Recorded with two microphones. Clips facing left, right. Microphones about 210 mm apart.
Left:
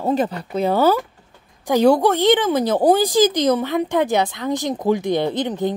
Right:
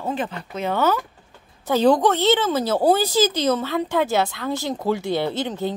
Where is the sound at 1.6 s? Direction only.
15° left (ahead or behind).